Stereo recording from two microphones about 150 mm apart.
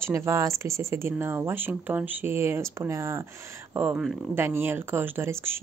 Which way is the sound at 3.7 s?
10° right (ahead or behind).